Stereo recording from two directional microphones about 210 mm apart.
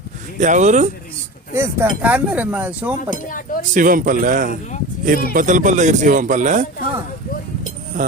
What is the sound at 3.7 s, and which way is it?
Speech, 40° right (ahead or behind).